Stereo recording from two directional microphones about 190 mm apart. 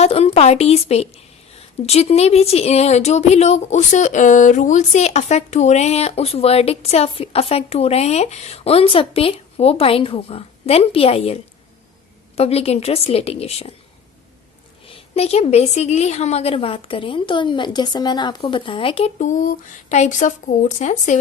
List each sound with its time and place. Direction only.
0.0 s a woman's voice: 30° left (ahead or behind)
12.4 s a woman's voice: 35° left (ahead or behind)
14.8 s a woman's voice: 35° left (ahead or behind)